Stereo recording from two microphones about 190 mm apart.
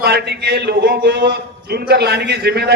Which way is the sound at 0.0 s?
60° right (ahead or behind).